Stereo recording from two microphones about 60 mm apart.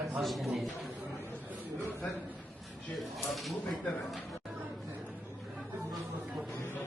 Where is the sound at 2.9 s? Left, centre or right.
Centre.